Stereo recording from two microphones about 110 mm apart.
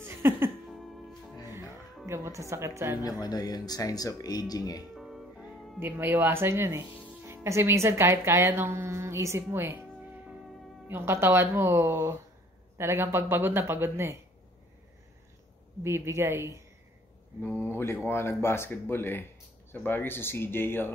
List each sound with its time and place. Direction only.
0.0 s music: 20° right (ahead or behind)
0.7 s music: centre (ahead or behind)
1.4 s music: 25° right (ahead or behind)
2.0 s speech: 25° right (ahead or behind)
3.0 s speech: 35° left (ahead or behind)
4.9 s music: centre (ahead or behind)
5.8 s speech: 20° right (ahead or behind)
10.9 s speech: 20° right (ahead or behind)
15.8 s speech: 25° right (ahead or behind)
17.6 s speech: 20° left (ahead or behind)